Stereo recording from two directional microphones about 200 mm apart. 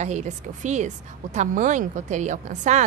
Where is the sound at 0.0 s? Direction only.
35° right (ahead or behind).